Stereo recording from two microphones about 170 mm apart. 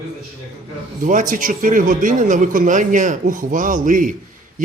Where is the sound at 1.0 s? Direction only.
50° right (ahead or behind).